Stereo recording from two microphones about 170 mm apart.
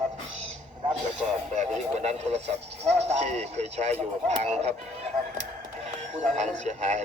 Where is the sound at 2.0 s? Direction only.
40° right (ahead or behind).